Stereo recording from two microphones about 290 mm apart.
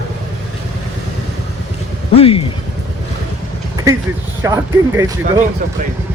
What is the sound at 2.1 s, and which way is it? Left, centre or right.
Speech, centre.